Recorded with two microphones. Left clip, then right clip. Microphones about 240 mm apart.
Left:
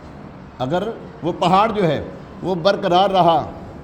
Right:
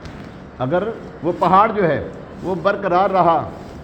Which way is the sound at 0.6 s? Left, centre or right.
Left.